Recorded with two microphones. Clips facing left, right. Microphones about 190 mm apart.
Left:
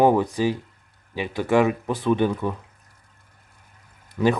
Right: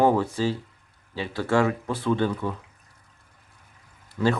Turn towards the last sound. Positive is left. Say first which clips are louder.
# left 3 dB
turn(degrees=15)  # may be behind; listen again after turning